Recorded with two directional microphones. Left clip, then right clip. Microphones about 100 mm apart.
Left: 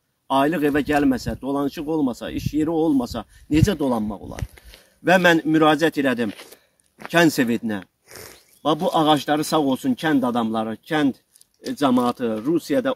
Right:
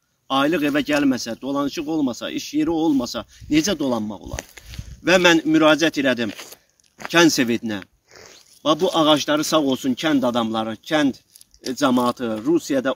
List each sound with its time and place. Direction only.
0.3 s a man's voice: 30° left (ahead or behind)
8.1 s a sound: 90° left
8.9 s speech: 40° left (ahead or behind)
10.2 s speech: 15° left (ahead or behind)
11.9 s speech: 10° right (ahead or behind)